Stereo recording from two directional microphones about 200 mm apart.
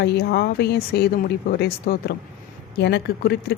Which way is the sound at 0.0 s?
50° left (ahead or behind).